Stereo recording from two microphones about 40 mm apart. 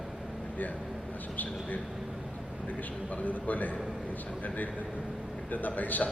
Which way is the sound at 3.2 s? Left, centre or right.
Left.